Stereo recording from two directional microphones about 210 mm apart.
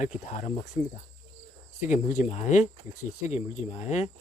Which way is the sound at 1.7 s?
35° left (ahead or behind).